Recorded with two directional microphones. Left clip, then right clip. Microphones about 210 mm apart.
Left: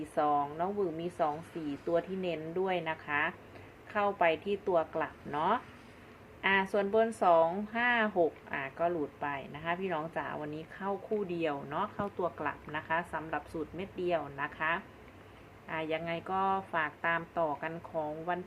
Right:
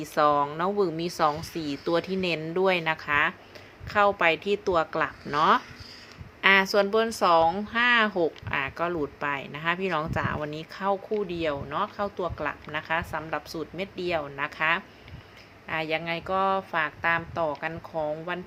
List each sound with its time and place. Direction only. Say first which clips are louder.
0.1 s speech: right 8 dB; 40° right (ahead or behind); by 18.3 s 25° right (ahead or behind)